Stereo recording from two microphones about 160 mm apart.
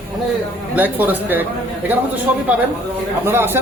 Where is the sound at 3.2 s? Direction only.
15° right (ahead or behind).